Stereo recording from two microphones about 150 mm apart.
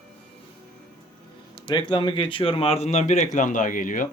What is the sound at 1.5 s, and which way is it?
Speech, 35° left (ahead or behind).